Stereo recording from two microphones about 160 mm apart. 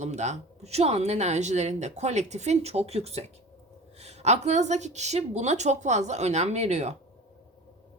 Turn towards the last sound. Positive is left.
turn(degrees=-45)  # may be behind; listen again after turning